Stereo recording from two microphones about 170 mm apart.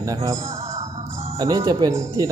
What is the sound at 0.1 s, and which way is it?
Speech, 20° right (ahead or behind).